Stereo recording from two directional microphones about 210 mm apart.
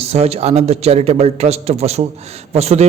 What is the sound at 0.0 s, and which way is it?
A man's voice, 30° right (ahead or behind).